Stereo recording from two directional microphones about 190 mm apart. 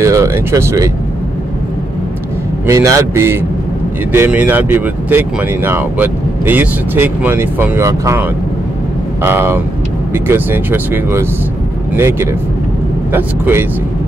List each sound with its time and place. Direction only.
0.0 s speech: 15° right (ahead or behind)
2.6 s speech: 15° right (ahead or behind)